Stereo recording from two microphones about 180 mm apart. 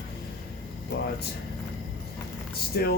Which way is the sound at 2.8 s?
60° left (ahead or behind).